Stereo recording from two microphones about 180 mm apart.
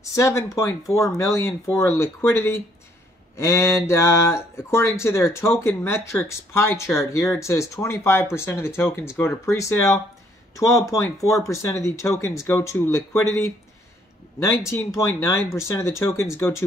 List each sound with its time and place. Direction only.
0.0 s speech: 15° left (ahead or behind)